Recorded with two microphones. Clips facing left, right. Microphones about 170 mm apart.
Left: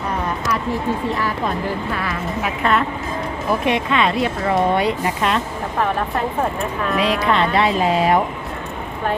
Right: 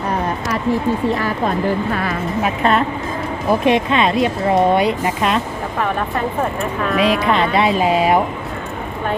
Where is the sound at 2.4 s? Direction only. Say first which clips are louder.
Right 3 dB; 25° right (ahead or behind).